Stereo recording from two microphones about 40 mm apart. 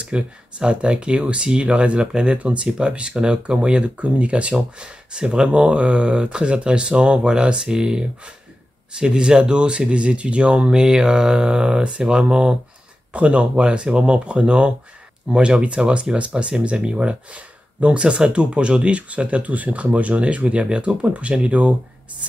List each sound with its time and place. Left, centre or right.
0.0 s speech: right